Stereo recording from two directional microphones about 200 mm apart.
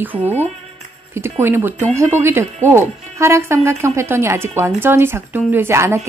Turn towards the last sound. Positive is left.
turn(degrees=-15)  # may be behind; listen again after turning